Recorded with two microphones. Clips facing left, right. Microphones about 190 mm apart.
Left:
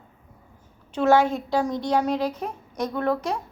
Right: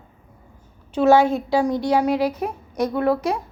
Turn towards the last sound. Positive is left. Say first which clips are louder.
# right 4 dB
turn(degrees=-10)  # may be behind; listen again after turning